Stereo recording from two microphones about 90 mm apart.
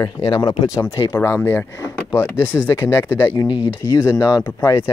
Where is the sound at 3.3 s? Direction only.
60° left (ahead or behind).